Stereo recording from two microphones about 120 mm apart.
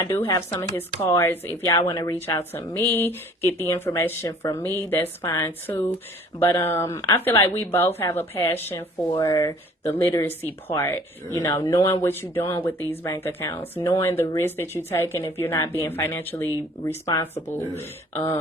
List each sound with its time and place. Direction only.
0.1 s speech: 20° left (ahead or behind)
1.6 s a woman's voice: 30° left (ahead or behind)
2.2 s speech: 20° left (ahead or behind)
9.2 s speech: 30° left (ahead or behind)
9.9 s speech: 20° left (ahead or behind)
17.7 s speech: 25° left (ahead or behind)